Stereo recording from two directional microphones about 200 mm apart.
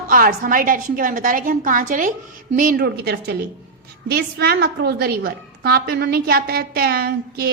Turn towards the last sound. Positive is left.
turn(degrees=-50)  # may be behind; listen again after turning